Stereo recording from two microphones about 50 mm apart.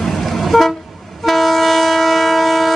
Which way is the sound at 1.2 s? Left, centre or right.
Centre.